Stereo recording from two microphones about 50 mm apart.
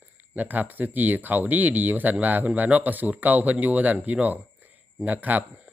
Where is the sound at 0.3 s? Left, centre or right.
Right.